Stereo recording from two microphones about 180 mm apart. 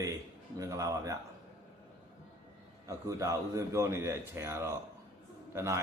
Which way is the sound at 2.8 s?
15° right (ahead or behind).